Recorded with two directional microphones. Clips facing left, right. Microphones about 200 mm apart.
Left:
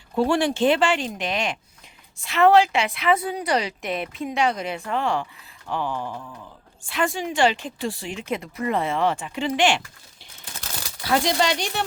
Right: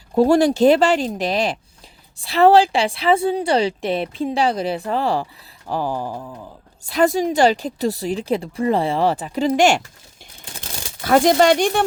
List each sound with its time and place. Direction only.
0.1 s speech: 40° right (ahead or behind)
11.0 s speech: 50° right (ahead or behind)